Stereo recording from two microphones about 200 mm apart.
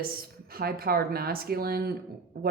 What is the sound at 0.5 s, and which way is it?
Speech, 50° right (ahead or behind).